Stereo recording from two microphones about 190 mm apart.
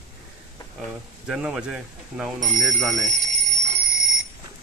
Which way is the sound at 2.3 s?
40° right (ahead or behind).